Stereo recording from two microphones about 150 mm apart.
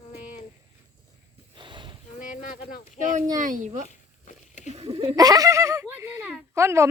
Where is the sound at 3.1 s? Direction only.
60° right (ahead or behind).